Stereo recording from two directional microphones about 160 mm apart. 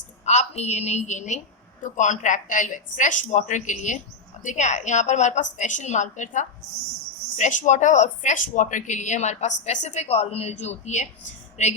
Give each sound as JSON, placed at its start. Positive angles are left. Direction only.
{"t": 0.3, "sound": "speech", "side_deg": 45}